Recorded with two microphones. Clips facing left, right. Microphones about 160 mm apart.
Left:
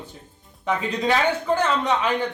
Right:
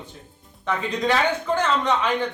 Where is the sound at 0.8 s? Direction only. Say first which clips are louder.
Even; 10° left (ahead or behind).